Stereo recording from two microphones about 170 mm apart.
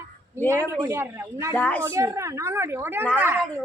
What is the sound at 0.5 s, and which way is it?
A woman's voice, 15° right (ahead or behind).